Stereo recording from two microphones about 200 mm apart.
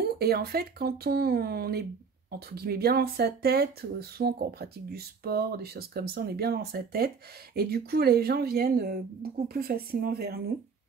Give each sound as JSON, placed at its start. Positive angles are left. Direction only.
{"t": 0.0, "sound": "speech", "side_deg": -50}